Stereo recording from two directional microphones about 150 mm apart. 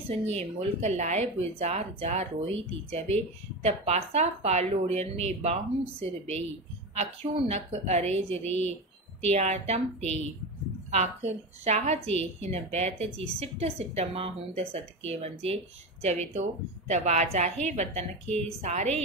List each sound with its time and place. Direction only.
0.2 s a woman's voice: 45° right (ahead or behind)
7.0 s a woman's voice: 45° right (ahead or behind)